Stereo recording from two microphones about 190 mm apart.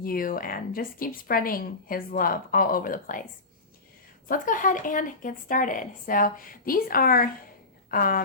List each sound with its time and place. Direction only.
0.0 s a woman's voice: 50° left (ahead or behind)
4.3 s a woman's voice: 45° left (ahead or behind)